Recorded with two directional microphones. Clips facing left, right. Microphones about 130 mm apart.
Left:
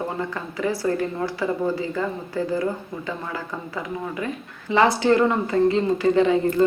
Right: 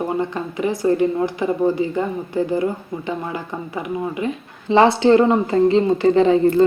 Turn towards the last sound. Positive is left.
turn(degrees=-30)  # may be behind; listen again after turning